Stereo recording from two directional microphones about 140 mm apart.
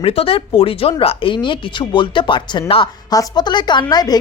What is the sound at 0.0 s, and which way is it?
Speech, 45° left (ahead or behind).